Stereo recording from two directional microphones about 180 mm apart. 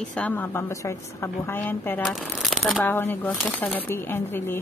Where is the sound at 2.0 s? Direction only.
Centre (ahead or behind).